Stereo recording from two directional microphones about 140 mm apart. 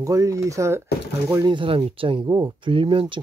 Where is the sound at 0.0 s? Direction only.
25° right (ahead or behind).